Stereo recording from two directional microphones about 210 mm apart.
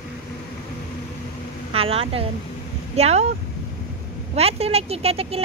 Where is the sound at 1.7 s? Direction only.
25° right (ahead or behind).